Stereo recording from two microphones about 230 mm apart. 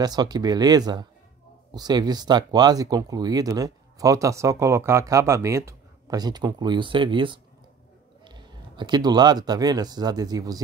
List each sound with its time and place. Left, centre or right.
0.0 s speech: centre